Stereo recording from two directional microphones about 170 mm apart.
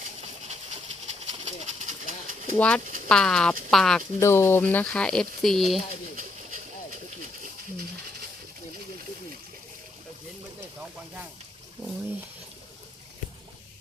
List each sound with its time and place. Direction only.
0.4 s bird: 40° right (ahead or behind)
2.6 s speech: 5° left (ahead or behind)
4.2 s speech: 15° left (ahead or behind)